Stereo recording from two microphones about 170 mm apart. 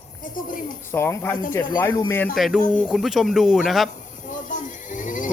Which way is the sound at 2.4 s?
Centre (ahead or behind).